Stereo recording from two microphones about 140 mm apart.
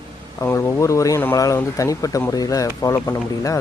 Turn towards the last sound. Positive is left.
turn(degrees=25)  # may be behind; listen again after turning